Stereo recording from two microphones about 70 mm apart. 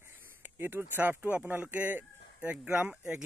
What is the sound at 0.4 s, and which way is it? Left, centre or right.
Speech, right.